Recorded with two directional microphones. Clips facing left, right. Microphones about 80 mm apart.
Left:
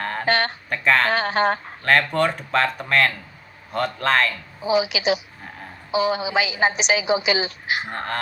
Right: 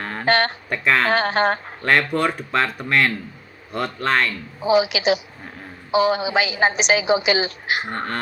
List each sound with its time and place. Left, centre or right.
0.0 s a sound: centre
0.3 s a sound: right
0.7 s speech: centre
1.1 s a woman's voice: right
1.8 s speech: centre
4.7 s a woman's voice: right
7.9 s speech: centre